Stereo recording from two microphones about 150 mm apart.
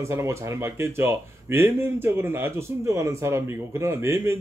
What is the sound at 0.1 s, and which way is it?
Speech, 20° right (ahead or behind).